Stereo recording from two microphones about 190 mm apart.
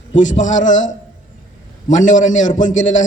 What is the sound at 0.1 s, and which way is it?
A man's voice, 40° left (ahead or behind).